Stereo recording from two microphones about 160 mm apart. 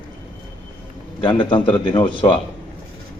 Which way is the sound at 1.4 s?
30° left (ahead or behind).